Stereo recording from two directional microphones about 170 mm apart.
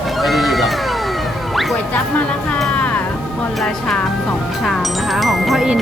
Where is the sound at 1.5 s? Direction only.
Centre (ahead or behind).